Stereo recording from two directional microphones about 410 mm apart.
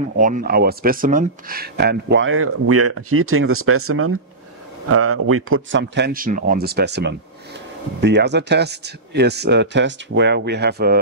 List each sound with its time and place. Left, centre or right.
0.2 s speech: centre